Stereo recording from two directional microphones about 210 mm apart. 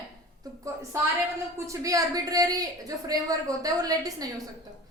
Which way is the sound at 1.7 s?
15° right (ahead or behind).